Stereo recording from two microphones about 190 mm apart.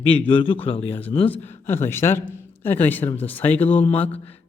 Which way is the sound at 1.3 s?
10° left (ahead or behind).